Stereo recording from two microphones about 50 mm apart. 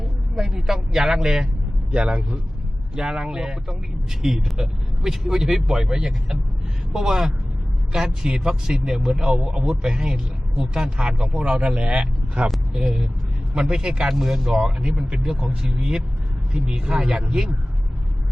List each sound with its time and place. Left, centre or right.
0.3 s speech: centre
2.0 s speech: right
2.9 s speech: centre
12.8 s speech: centre
16.6 s speech: right
16.9 s speech: centre